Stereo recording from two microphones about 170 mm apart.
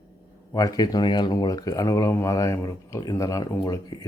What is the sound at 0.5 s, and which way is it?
Speech, 20° left (ahead or behind).